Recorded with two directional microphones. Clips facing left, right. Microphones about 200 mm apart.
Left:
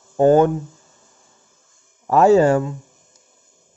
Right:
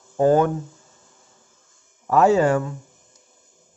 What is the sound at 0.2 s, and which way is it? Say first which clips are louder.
Speech: left 4 dB; 25° left (ahead or behind).